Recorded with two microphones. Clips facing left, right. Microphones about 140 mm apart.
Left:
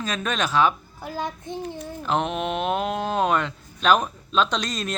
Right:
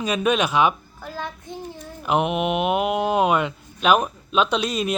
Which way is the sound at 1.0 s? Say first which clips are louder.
Left 2 dB; 15° left (ahead or behind).